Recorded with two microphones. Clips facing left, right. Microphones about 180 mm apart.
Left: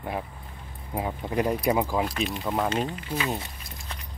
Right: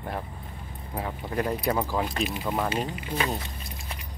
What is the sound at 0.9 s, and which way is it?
Speech, 15° left (ahead or behind).